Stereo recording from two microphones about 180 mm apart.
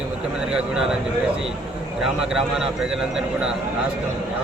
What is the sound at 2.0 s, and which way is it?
A man's voice, 5° right (ahead or behind).